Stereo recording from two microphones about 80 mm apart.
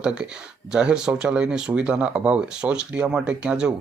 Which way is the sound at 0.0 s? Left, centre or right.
Centre.